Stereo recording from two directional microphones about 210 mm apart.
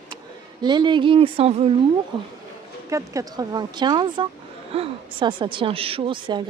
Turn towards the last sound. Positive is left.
turn(degrees=-25)  # may be behind; listen again after turning